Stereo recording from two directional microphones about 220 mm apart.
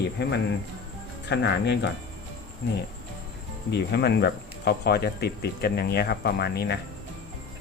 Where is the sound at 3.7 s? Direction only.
50° left (ahead or behind).